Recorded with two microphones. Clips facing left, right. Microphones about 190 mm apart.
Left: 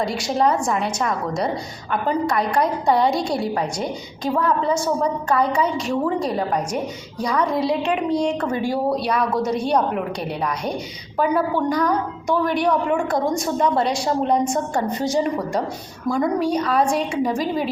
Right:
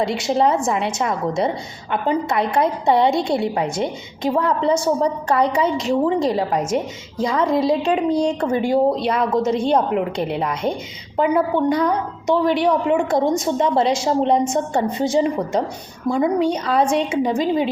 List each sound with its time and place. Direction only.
0.0 s a woman's voice: 25° right (ahead or behind)